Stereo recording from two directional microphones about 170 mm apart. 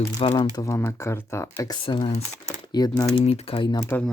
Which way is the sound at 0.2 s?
30° left (ahead or behind).